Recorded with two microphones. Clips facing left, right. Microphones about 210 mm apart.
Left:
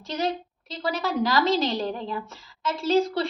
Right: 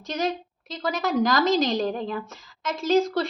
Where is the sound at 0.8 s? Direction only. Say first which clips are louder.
Right 2 dB; 45° right (ahead or behind).